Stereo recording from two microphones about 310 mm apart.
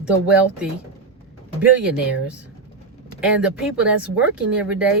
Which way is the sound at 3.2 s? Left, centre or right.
Centre.